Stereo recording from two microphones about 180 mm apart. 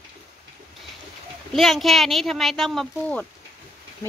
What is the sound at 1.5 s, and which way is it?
A woman's voice, centre (ahead or behind).